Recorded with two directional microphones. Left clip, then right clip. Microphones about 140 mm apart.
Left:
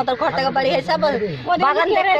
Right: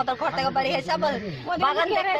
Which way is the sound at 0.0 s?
5° right (ahead or behind).